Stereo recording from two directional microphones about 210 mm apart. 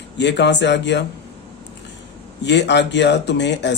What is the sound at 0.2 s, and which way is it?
Speech, 55° left (ahead or behind).